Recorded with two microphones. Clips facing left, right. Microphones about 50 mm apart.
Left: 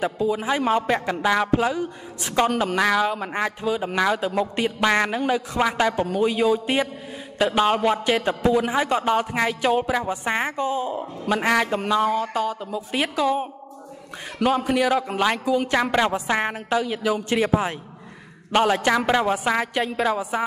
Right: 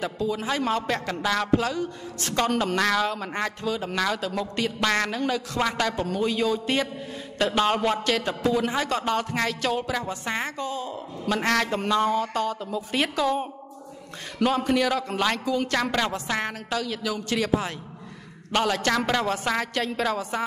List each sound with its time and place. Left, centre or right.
0.0 s a man's voice: centre
11.3 s a man's voice: centre